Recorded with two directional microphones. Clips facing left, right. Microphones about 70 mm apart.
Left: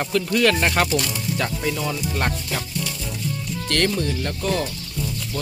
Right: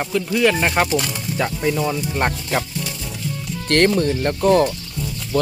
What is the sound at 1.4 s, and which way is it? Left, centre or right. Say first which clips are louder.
Speech: right 6 dB; centre.